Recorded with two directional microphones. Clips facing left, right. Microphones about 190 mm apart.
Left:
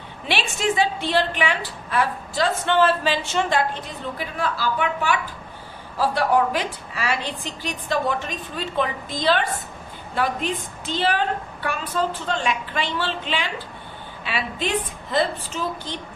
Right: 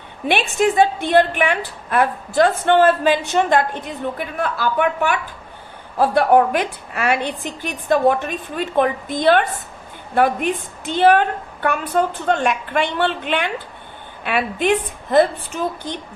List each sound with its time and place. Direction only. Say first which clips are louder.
0.3 s a woman's voice: right 6 dB; 55° right (ahead or behind)